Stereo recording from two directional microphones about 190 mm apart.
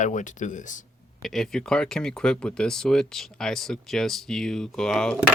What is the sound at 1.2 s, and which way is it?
Speech, centre (ahead or behind).